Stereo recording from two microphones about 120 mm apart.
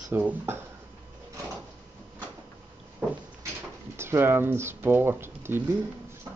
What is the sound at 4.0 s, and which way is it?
Speech, 20° right (ahead or behind).